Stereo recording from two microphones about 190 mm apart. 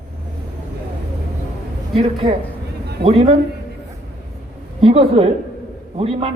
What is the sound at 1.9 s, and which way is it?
A man's voice, 30° right (ahead or behind).